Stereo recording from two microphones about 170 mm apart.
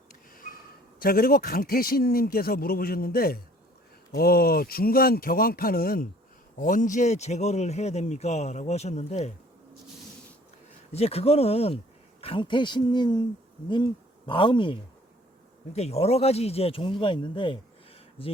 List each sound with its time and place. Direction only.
0.3 s a man's voice: 55° left (ahead or behind); by 9.3 s 40° left (ahead or behind)
10.9 s speech: 35° left (ahead or behind)
14.3 s speech: 30° left (ahead or behind)